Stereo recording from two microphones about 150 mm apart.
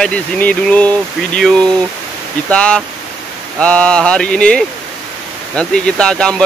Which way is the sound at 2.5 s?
5° left (ahead or behind).